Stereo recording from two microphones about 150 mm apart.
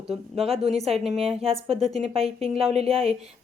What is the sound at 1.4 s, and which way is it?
A woman's voice, 40° right (ahead or behind).